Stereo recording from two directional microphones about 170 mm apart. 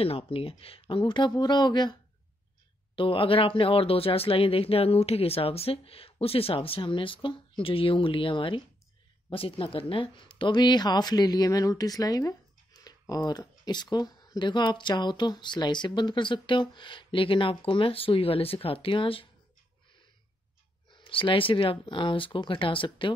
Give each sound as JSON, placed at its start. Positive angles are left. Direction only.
{"t": 0.0, "sound": "speech", "side_deg": 35}
{"t": 3.0, "sound": "speech", "side_deg": 30}
{"t": 20.9, "sound": "speech", "side_deg": 30}